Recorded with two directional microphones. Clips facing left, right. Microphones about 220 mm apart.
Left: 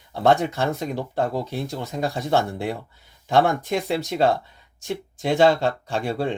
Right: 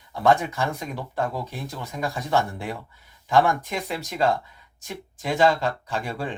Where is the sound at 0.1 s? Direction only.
25° left (ahead or behind).